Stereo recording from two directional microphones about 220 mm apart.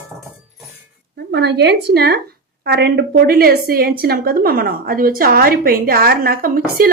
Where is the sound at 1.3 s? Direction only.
50° right (ahead or behind).